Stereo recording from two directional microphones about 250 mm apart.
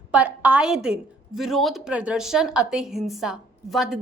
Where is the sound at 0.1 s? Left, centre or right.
Centre.